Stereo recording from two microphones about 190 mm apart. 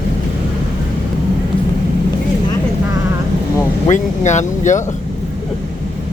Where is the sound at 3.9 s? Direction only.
40° left (ahead or behind).